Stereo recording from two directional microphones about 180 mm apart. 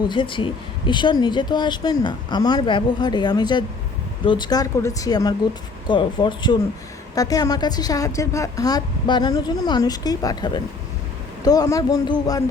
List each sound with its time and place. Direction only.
0.1 s speech: 25° left (ahead or behind)